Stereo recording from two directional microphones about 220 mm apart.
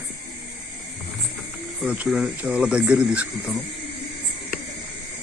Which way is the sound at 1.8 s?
5° right (ahead or behind).